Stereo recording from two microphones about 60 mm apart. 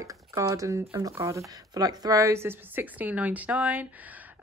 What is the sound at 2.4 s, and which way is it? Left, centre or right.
A woman's voice, right.